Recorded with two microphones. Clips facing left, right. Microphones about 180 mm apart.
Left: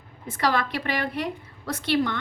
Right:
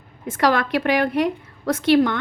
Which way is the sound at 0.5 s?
50° right (ahead or behind).